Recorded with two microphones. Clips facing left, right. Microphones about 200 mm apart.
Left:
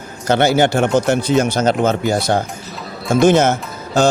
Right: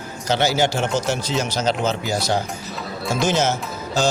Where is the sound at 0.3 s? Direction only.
55° left (ahead or behind).